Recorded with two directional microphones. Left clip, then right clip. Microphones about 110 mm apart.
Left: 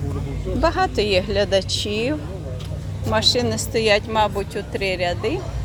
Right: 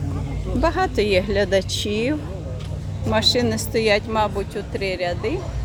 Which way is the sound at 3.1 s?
45° right (ahead or behind).